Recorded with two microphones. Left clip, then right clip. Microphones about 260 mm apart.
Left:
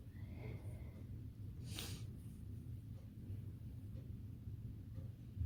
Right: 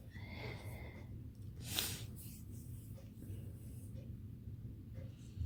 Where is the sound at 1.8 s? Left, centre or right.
Right.